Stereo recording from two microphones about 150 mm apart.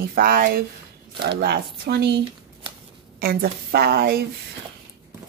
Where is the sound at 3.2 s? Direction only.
85° right.